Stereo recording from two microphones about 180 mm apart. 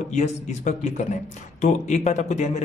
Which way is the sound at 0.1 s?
40° left (ahead or behind).